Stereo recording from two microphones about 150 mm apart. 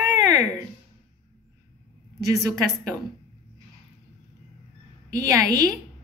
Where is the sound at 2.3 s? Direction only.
25° right (ahead or behind).